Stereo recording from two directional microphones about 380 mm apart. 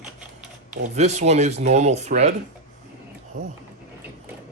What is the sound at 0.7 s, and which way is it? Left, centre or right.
Speech, centre.